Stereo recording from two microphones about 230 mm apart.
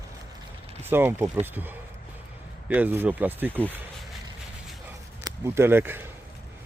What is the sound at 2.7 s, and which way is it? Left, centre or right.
Speech, centre.